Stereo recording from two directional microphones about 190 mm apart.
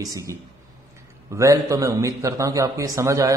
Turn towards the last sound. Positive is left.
turn(degrees=-15)  # may be behind; listen again after turning